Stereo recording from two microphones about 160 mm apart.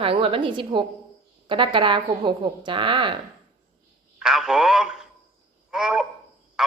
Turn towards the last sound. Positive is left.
turn(degrees=-5)  # may be behind; listen again after turning